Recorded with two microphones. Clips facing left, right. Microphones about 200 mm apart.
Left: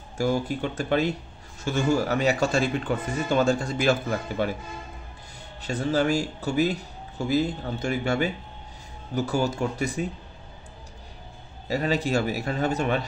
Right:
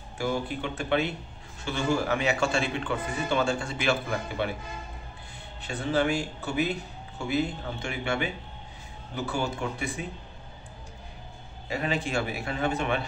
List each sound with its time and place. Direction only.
0.2 s speech: 40° left (ahead or behind)
5.6 s speech: 40° left (ahead or behind)
11.7 s speech: 40° left (ahead or behind)